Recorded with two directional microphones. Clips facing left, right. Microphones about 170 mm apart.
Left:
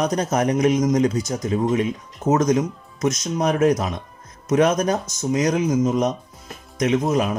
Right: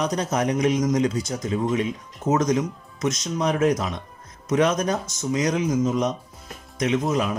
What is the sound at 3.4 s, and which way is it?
Speech, 45° left (ahead or behind).